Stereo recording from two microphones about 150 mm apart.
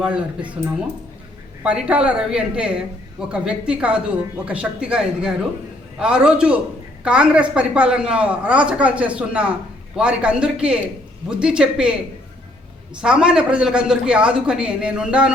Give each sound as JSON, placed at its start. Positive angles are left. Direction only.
{"t": 0.0, "sound": "a woman's voice", "side_deg": -10}
{"t": 1.6, "sound": "a woman's voice", "side_deg": -5}
{"t": 13.0, "sound": "speech", "side_deg": -5}